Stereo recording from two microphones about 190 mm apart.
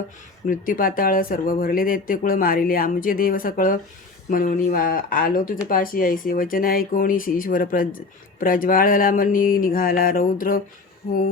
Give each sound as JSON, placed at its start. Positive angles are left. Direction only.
{"t": 0.4, "sound": "speech", "side_deg": 45}